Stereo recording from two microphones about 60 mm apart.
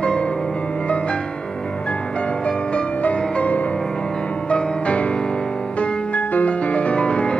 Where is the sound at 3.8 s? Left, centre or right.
Centre.